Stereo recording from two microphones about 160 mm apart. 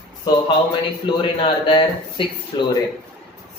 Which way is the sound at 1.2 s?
30° left (ahead or behind).